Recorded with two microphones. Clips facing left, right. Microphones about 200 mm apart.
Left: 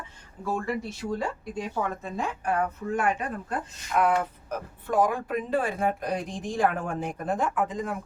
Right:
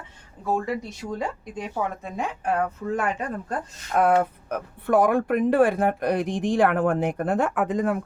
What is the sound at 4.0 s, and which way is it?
Speech, 55° right (ahead or behind).